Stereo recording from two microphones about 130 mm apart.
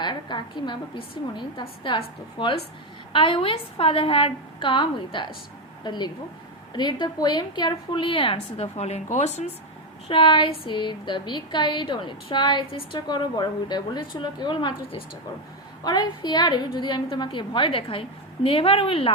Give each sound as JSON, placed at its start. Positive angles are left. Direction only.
{"t": 0.0, "sound": "a woman's voice", "side_deg": 35}
{"t": 10.1, "sound": "a woman's voice", "side_deg": 40}